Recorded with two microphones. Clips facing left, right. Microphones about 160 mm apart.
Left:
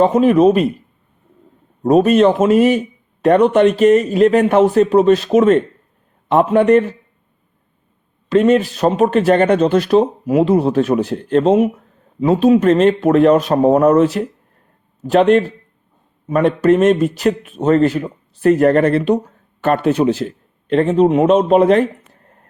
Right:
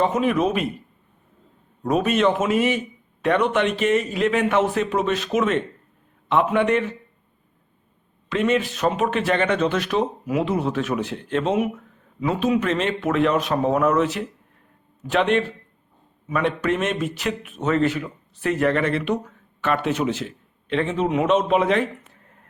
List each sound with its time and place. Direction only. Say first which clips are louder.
0.0 s speech: left 9 dB; 35° left (ahead or behind)
1.8 s speech: left 9 dB; 35° left (ahead or behind)
8.3 s speech: left 9 dB; 40° left (ahead or behind)